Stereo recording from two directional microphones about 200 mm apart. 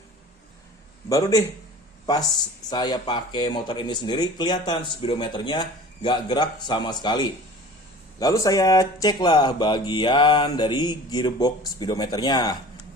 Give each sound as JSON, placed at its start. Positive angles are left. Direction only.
{"t": 1.1, "sound": "a man's voice", "side_deg": 15}
{"t": 2.6, "sound": "speech", "side_deg": 20}